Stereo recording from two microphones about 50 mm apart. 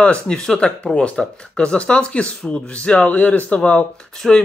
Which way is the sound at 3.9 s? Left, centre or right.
Centre.